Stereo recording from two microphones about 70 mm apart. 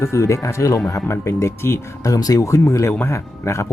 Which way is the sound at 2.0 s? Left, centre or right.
Left.